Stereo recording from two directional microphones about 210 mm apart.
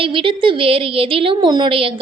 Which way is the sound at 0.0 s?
25° right (ahead or behind).